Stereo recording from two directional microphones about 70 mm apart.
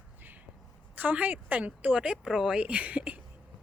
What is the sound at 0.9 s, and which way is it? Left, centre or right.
Speech, right.